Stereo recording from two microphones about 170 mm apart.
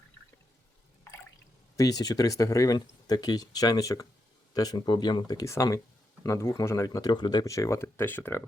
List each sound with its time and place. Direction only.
1.7 s speech: 20° left (ahead or behind)